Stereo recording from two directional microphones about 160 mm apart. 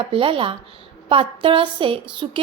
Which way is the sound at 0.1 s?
35° right (ahead or behind).